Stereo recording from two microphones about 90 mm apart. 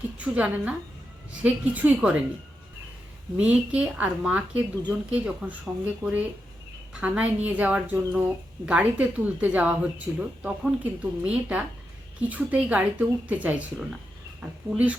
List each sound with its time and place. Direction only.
0.2 s speech: 15° right (ahead or behind)
3.3 s speech: 15° right (ahead or behind)